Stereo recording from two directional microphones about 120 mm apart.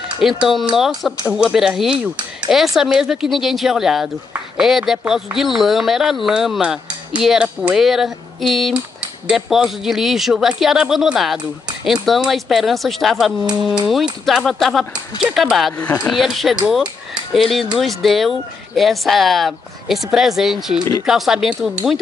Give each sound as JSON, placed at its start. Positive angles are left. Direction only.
{"t": 0.2, "sound": "speech", "side_deg": 0}
{"t": 15.8, "sound": "speech", "side_deg": 20}
{"t": 16.1, "sound": "speech", "side_deg": 0}